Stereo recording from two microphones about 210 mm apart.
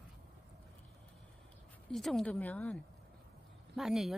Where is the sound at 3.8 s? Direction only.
Centre (ahead or behind).